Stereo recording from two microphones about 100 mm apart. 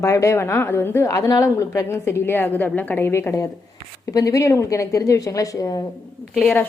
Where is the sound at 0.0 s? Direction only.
30° left (ahead or behind).